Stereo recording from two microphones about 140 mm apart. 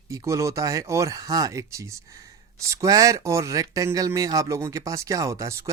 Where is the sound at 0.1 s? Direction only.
20° right (ahead or behind).